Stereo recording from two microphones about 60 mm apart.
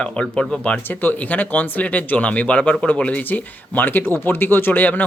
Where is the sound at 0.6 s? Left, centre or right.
Left.